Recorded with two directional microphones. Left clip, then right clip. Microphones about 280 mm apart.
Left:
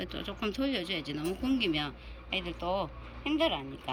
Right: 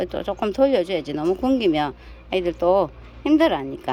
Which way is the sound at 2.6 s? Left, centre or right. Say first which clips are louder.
Right 16 dB; right.